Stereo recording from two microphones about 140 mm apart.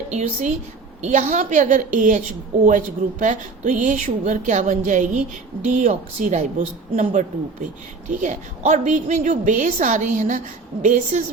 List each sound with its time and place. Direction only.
0.1 s speech: 55° right (ahead or behind)